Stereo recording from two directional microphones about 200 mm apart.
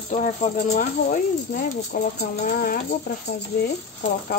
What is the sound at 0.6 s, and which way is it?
Speech, 45° left (ahead or behind).